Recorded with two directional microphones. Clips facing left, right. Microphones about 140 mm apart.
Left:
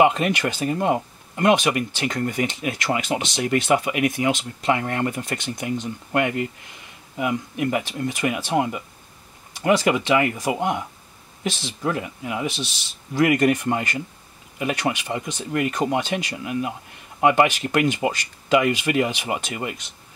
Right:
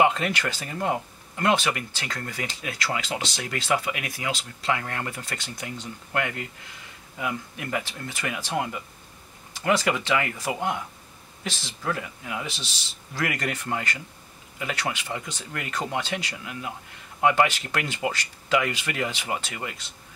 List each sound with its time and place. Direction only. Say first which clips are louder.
0.0 s speech: left 4 dB; 20° left (ahead or behind)